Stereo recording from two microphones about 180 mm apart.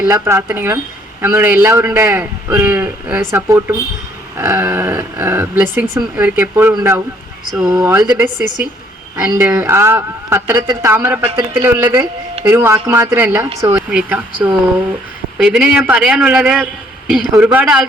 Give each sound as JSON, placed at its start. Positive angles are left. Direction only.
{"t": 0.0, "sound": "a man's voice", "side_deg": -15}
{"t": 10.6, "sound": "speech", "side_deg": -25}
{"t": 10.9, "sound": "speech", "side_deg": -10}
{"t": 15.4, "sound": "a man's voice", "side_deg": -5}